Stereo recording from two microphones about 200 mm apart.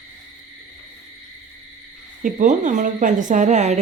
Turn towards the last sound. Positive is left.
turn(degrees=-35)  # may be behind; listen again after turning